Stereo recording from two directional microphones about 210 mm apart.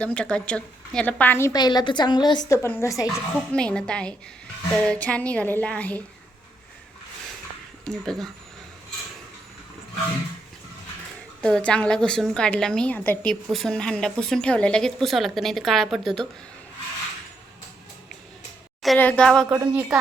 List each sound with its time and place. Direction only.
0.0 s a woman's voice: 5° left (ahead or behind)
7.9 s a woman's voice: centre (ahead or behind)
11.3 s a woman's voice: 5° left (ahead or behind)
18.8 s a woman's voice: 5° left (ahead or behind)
19.5 s a woman's voice: 10° right (ahead or behind)